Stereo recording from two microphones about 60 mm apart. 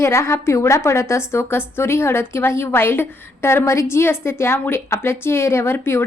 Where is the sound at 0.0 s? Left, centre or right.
Left.